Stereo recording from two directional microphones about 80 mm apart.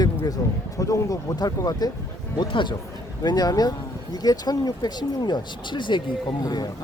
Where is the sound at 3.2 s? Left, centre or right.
Left.